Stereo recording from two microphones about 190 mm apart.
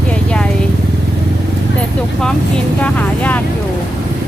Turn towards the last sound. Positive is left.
turn(degrees=10)  # may be behind; listen again after turning